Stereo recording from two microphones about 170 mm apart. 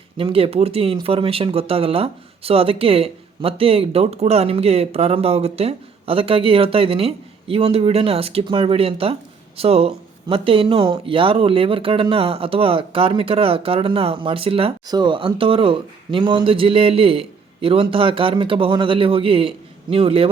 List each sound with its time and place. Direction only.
0.2 s speech: 30° right (ahead or behind)